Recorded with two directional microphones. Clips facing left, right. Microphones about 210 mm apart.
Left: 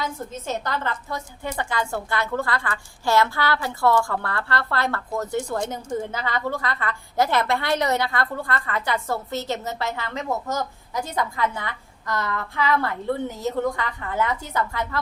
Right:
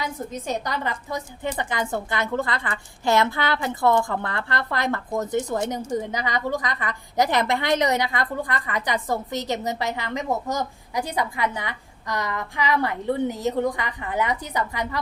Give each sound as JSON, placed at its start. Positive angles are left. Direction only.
{"t": 0.0, "sound": "a woman's voice", "side_deg": -15}